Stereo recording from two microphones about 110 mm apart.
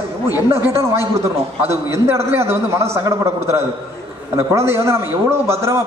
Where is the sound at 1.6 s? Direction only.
25° right (ahead or behind).